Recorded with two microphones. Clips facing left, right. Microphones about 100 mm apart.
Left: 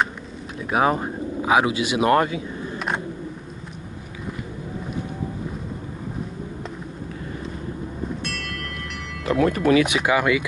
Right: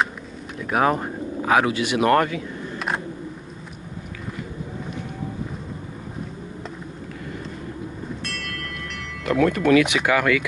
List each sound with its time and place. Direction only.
0.6 s speech: 20° left (ahead or behind)
8.2 s music: centre (ahead or behind)
9.4 s speech: 35° left (ahead or behind)
10.0 s speech: 20° left (ahead or behind)